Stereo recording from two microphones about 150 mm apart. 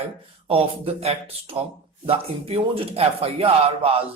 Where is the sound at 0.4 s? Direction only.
40° right (ahead or behind).